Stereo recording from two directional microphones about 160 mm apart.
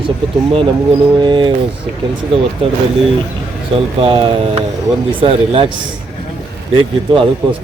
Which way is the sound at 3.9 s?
35° right (ahead or behind).